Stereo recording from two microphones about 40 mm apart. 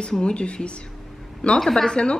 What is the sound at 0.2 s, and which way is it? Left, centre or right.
Speech, left.